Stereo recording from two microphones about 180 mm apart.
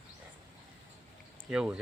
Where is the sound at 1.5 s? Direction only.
5° right (ahead or behind).